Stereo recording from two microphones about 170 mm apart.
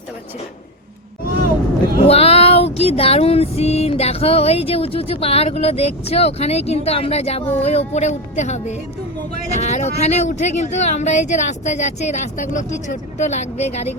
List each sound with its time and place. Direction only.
2.0 s a sound: 35° left (ahead or behind)
2.7 s music: 35° left (ahead or behind)
7.6 s speech: 35° left (ahead or behind)